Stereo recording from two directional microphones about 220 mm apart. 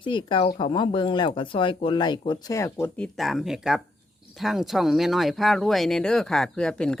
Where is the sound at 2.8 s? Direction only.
5° left (ahead or behind).